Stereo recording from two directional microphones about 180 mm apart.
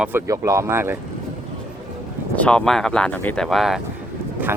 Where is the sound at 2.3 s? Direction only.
5° left (ahead or behind).